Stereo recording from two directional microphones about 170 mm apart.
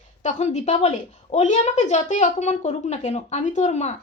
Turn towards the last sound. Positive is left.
turn(degrees=40)  # may be behind; listen again after turning